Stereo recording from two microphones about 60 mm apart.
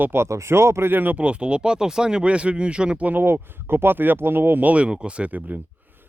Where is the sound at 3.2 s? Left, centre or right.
Right.